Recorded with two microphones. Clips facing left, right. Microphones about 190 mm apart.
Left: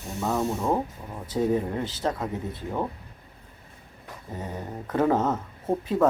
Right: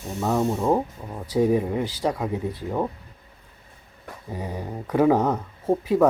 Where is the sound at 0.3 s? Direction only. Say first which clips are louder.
Right 4 dB; 20° right (ahead or behind).